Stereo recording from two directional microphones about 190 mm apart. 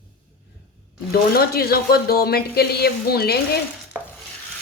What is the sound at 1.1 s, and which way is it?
Speech, 55° left (ahead or behind).